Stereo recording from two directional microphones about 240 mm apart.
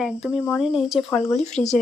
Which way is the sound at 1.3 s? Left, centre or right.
Left.